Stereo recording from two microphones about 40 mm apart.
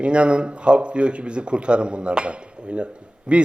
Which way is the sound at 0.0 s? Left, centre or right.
Right.